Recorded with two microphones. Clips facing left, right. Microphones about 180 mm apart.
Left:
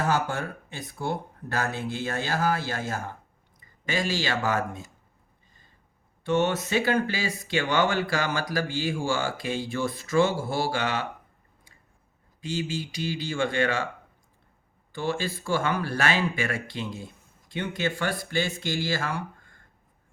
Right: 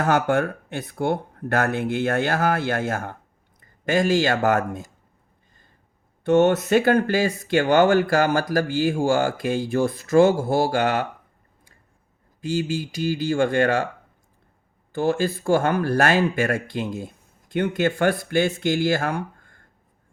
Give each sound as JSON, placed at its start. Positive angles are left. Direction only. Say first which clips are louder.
{"t": 0.0, "sound": "speech", "louder": "right 7 dB", "side_deg": -60}
{"t": 6.2, "sound": "speech", "louder": "right 7 dB", "side_deg": -50}
{"t": 12.5, "sound": "speech", "louder": "right 6 dB", "side_deg": -45}
{"t": 14.9, "sound": "speech", "louder": "right 7 dB", "side_deg": -45}